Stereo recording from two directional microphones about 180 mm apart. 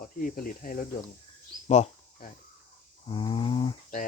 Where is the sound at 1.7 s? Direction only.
35° left (ahead or behind).